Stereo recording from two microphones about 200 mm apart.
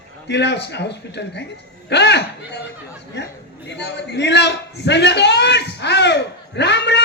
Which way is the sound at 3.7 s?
60° left (ahead or behind).